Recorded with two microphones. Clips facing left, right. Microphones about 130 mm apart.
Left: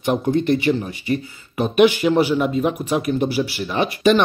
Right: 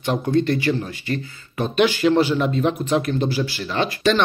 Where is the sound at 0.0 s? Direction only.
15° left (ahead or behind).